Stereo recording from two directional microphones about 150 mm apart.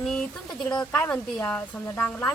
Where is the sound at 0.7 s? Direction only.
15° left (ahead or behind).